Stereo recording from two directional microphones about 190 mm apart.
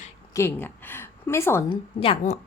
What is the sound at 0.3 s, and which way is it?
A woman's voice, 10° left (ahead or behind).